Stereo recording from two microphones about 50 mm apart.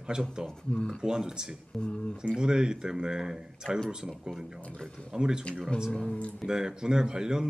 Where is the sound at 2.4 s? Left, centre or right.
Centre.